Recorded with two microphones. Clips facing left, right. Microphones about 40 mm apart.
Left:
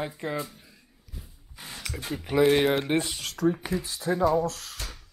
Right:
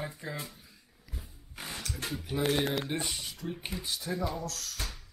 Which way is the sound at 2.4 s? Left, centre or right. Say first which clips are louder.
Left 9 dB; left.